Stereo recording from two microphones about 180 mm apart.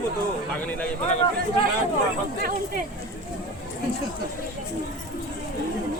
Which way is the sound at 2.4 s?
55° right (ahead or behind).